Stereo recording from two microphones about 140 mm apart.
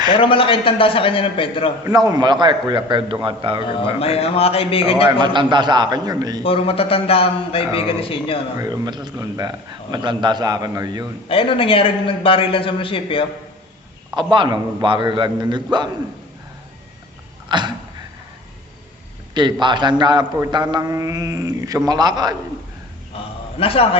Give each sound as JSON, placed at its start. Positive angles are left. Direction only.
{"t": 0.1, "sound": "a man's voice", "side_deg": 40}
{"t": 1.8, "sound": "a man's voice", "side_deg": -25}
{"t": 3.7, "sound": "a man's voice", "side_deg": 45}
{"t": 5.2, "sound": "a man's voice", "side_deg": -35}
{"t": 6.4, "sound": "a man's voice", "side_deg": 40}
{"t": 8.5, "sound": "a man's voice", "side_deg": -25}
{"t": 11.3, "sound": "a man's voice", "side_deg": 40}
{"t": 14.2, "sound": "a man's voice", "side_deg": -35}
{"t": 17.5, "sound": "a man's voice", "side_deg": -35}
{"t": 19.3, "sound": "a man's voice", "side_deg": -35}
{"t": 23.6, "sound": "a man's voice", "side_deg": 45}